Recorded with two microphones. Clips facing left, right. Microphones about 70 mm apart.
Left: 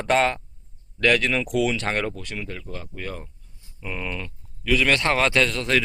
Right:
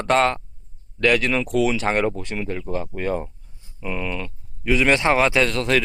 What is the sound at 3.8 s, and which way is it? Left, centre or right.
Speech, centre.